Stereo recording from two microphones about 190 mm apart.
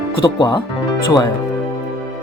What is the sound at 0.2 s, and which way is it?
Speech, 20° left (ahead or behind).